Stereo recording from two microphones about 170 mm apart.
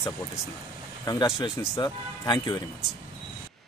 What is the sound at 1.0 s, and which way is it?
Speech, 20° left (ahead or behind).